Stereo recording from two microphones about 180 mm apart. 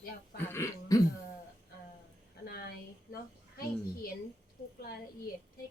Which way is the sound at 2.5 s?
60° left (ahead or behind).